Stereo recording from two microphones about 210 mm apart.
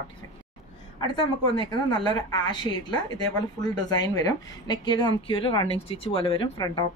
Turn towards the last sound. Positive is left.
turn(degrees=20)  # may be behind; listen again after turning